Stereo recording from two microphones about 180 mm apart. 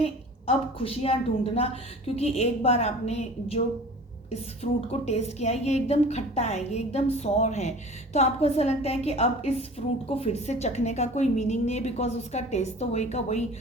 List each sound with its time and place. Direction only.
0.0 s a woman's voice: 35° left (ahead or behind)
2.1 s a woman's voice: 35° left (ahead or behind)